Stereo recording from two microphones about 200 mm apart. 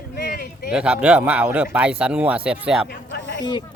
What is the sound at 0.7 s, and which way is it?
A man's voice, 5° right (ahead or behind).